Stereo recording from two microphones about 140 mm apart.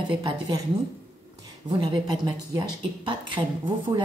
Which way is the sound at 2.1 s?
30° right (ahead or behind).